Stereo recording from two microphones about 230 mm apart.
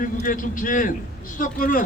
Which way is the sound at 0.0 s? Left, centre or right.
Left.